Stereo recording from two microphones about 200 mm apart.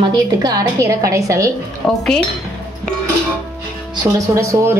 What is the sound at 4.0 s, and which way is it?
Speech, 15° right (ahead or behind).